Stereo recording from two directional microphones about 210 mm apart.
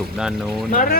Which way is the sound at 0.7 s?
40° left (ahead or behind).